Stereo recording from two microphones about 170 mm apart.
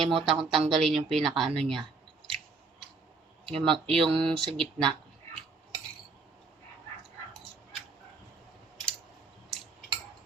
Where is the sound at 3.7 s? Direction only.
30° right (ahead or behind).